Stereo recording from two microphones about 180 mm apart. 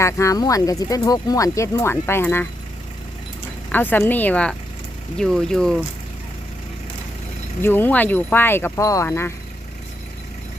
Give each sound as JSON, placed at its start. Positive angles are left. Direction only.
{"t": 0.0, "sound": "speech", "side_deg": 15}
{"t": 3.7, "sound": "speech", "side_deg": 10}
{"t": 7.6, "sound": "speech", "side_deg": 10}